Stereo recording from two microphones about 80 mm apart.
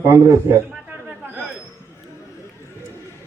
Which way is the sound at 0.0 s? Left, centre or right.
Right.